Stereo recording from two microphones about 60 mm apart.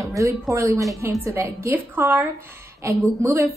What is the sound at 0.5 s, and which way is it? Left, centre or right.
Speech, right.